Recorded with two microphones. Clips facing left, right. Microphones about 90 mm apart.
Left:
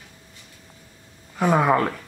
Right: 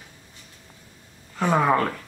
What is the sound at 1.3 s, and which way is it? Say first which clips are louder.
Speech: left 2 dB; 10° left (ahead or behind).